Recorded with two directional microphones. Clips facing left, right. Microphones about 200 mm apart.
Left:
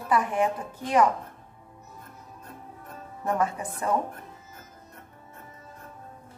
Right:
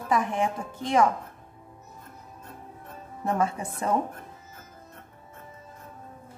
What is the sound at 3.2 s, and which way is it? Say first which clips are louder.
Speech: even; 25° right (ahead or behind).